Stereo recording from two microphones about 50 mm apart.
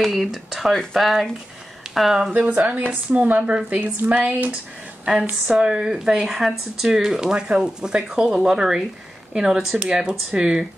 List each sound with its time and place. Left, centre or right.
0.0 s speech: centre
2.3 s a woman's voice: right
5.5 s speech: centre